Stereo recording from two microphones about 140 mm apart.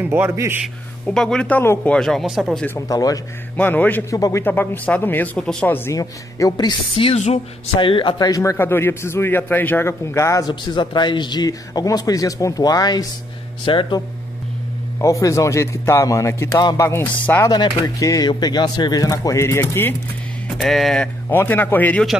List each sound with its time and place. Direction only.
0.0 s a man's voice: 10° right (ahead or behind)
1.0 s speech: 5° left (ahead or behind)
1.6 s speech: 20° left (ahead or behind)
2.0 s speech: centre (ahead or behind)
2.9 s a man's voice: 25° left (ahead or behind)
3.5 s speech: 10° left (ahead or behind)
5.9 s speech: 25° left (ahead or behind)
7.2 s speech: 50° left (ahead or behind)
7.8 s a man's voice: 35° left (ahead or behind)
10.5 s a man's voice: 35° left (ahead or behind)
15.0 s a man's voice: 20° left (ahead or behind)
20.5 s speech: centre (ahead or behind)
21.3 s speech: 15° left (ahead or behind)